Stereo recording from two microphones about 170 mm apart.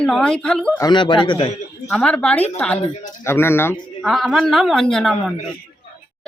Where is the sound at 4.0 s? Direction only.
Centre (ahead or behind).